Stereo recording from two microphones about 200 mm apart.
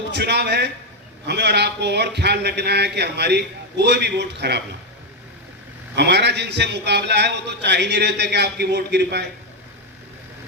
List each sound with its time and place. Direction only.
0.1 s a man's voice: 55° right (ahead or behind)
6.0 s a man's voice: 55° right (ahead or behind)